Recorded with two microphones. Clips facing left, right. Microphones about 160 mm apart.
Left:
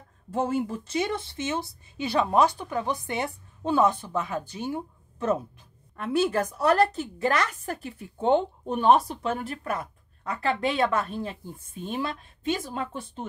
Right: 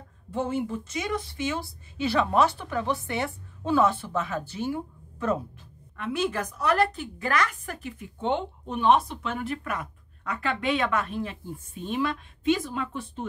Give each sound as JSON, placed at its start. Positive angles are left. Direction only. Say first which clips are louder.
{"t": 0.3, "sound": "a woman's voice", "louder": "left 2 dB", "side_deg": 40}
{"t": 5.9, "sound": "a woman's voice", "louder": "left 4 dB", "side_deg": 35}
{"t": 12.6, "sound": "a woman's voice", "louder": "right 1 dB", "side_deg": 30}